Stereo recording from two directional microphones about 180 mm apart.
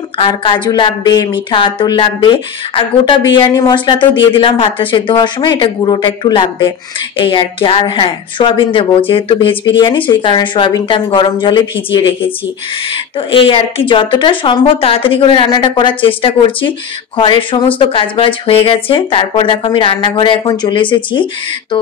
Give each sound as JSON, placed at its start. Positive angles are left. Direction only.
{"t": 0.2, "sound": "speech", "side_deg": 25}
{"t": 13.3, "sound": "speech", "side_deg": 30}